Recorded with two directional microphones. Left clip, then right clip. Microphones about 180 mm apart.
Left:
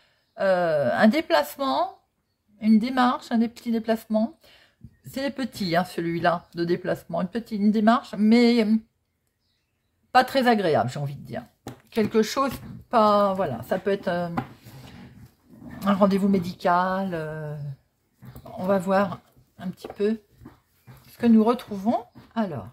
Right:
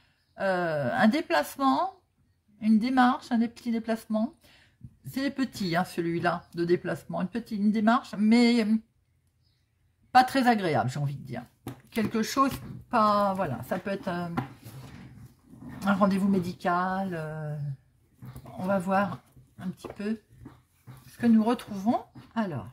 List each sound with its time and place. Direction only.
0.4 s a woman's voice: 15° left (ahead or behind)
10.1 s speech: 15° left (ahead or behind)
15.8 s speech: 15° left (ahead or behind)
18.7 s speech: 15° left (ahead or behind)
21.2 s speech: 20° left (ahead or behind)